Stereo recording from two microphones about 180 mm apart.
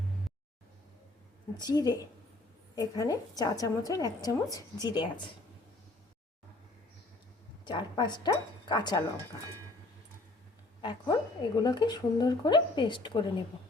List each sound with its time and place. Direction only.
1.5 s speech: 20° left (ahead or behind)
7.6 s speech: 25° left (ahead or behind)
10.8 s speech: 25° left (ahead or behind)